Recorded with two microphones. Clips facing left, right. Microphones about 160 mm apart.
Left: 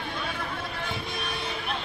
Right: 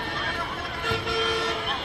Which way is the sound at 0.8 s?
90° right.